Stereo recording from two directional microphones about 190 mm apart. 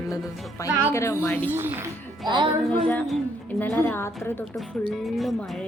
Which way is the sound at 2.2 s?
25° right (ahead or behind).